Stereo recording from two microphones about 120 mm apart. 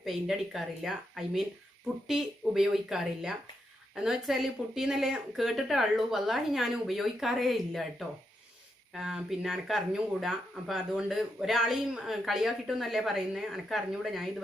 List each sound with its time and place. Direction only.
0.0 s speech: centre (ahead or behind)